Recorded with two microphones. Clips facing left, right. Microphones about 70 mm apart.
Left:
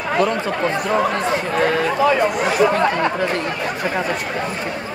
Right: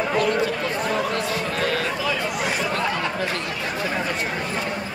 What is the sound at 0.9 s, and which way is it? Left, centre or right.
Speech, left.